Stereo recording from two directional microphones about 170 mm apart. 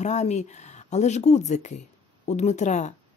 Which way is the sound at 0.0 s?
40° left (ahead or behind).